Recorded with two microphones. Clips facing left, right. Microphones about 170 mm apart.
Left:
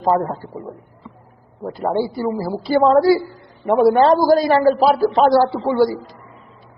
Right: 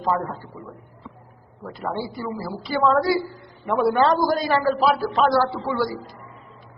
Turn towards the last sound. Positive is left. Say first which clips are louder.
# left 8 dB
turn(degrees=25)  # may be behind; listen again after turning